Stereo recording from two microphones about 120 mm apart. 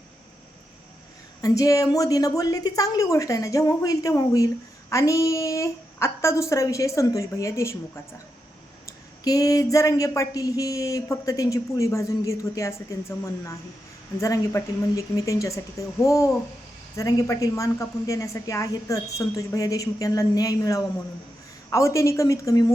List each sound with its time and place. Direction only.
1.4 s speech: 30° left (ahead or behind)
8.9 s speech: 30° left (ahead or behind)